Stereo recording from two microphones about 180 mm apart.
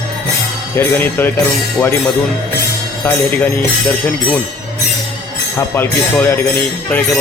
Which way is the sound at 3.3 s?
10° left (ahead or behind).